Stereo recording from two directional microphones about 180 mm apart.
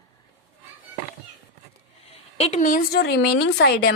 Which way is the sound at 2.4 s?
45° left (ahead or behind).